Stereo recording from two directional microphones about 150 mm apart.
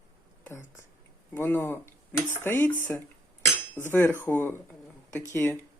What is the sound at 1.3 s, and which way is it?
Speech, 15° left (ahead or behind).